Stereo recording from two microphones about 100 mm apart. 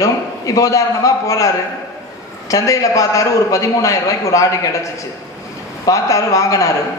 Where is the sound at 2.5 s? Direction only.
35° left (ahead or behind).